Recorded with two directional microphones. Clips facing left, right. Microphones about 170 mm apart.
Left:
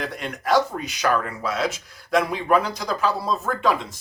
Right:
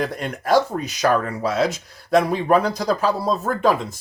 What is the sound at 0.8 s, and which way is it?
Speech, 40° right (ahead or behind).